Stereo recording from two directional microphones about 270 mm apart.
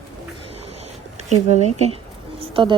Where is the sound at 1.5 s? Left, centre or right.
Right.